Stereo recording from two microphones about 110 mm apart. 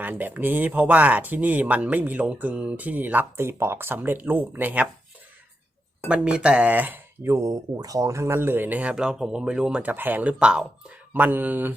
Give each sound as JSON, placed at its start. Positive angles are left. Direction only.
{"t": 0.0, "sound": "speech", "side_deg": -15}
{"t": 6.1, "sound": "speech", "side_deg": -10}
{"t": 7.3, "sound": "speech", "side_deg": -35}